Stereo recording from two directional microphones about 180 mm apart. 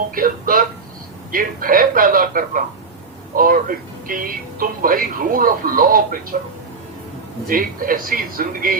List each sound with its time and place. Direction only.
0.1 s speech: 50° right (ahead or behind)
7.4 s speech: 50° right (ahead or behind)